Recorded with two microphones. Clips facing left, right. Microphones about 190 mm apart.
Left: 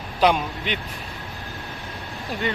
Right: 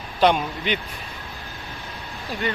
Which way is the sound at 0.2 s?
Centre (ahead or behind).